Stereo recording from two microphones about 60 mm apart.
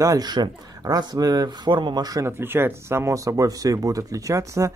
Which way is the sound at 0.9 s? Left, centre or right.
Right.